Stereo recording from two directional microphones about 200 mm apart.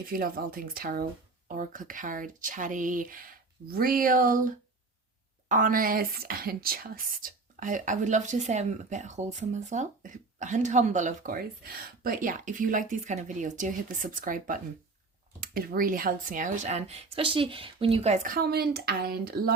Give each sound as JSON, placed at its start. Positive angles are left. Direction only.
{"t": 0.1, "sound": "speech", "side_deg": -45}